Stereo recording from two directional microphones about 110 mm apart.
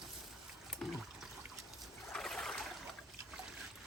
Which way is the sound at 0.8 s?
5° left (ahead or behind).